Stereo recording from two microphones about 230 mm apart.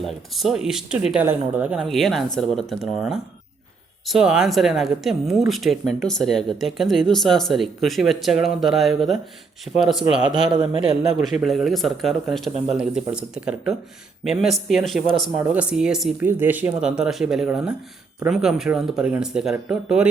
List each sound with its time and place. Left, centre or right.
0.0 s speech: centre
10.3 s a man's voice: right
11.2 s speech: centre